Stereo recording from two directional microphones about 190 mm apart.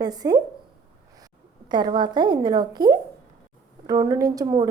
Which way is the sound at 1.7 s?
25° right (ahead or behind).